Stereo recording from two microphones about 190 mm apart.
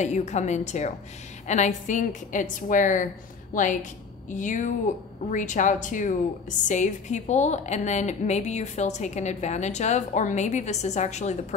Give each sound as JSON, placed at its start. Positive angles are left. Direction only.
{"t": 0.0, "sound": "a woman's voice", "side_deg": 35}